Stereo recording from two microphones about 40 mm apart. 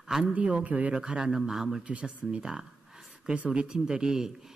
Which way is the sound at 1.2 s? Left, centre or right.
Centre.